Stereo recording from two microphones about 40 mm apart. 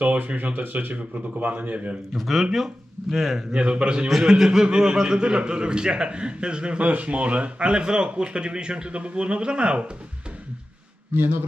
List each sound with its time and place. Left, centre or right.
0.4 s speech: right
2.1 s speech: centre
3.5 s speech: right
4.2 s speech: centre
6.8 s speech: right